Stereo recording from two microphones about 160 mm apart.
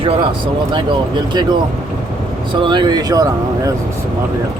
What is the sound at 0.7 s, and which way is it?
Speech, 30° right (ahead or behind).